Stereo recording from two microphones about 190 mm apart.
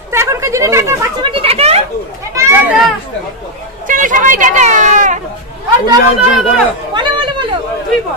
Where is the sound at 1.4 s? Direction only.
30° right (ahead or behind).